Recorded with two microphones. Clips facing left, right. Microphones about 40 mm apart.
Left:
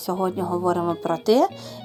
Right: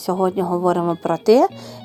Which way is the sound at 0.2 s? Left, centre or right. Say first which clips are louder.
Right 5 dB; right.